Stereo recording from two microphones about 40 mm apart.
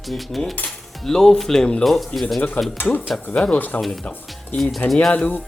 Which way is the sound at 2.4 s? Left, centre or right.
Left.